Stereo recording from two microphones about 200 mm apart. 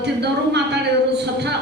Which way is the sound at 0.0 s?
55° right (ahead or behind).